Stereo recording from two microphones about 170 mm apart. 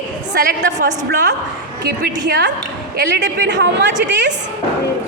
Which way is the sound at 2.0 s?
90° right.